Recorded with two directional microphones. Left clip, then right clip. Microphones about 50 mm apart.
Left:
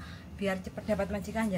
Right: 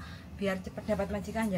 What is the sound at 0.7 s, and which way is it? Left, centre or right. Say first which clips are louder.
Speech: left 1 dB; left.